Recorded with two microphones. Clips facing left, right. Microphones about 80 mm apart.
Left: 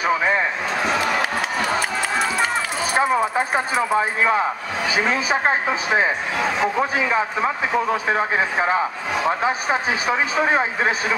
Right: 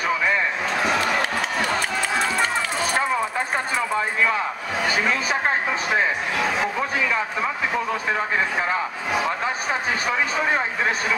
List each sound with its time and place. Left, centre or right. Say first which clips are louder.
0.1 s a sound: left 2 dB; left
0.7 s run: left 1 dB; centre
5.0 s a man's voice: left 3 dB; centre
7.1 s speech: left 3 dB; centre